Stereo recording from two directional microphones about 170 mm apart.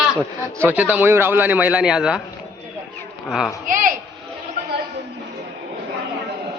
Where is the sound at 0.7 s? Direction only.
10° right (ahead or behind).